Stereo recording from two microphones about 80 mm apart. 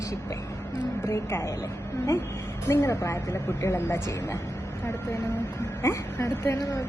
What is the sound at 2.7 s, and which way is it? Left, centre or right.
A woman's voice, left.